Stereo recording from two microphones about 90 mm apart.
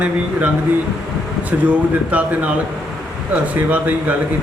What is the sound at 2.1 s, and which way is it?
A man's voice, 15° right (ahead or behind).